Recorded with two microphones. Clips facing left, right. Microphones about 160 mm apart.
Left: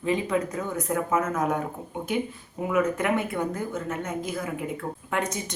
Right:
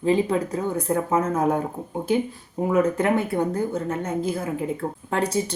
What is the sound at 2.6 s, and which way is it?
A woman's voice, 30° right (ahead or behind).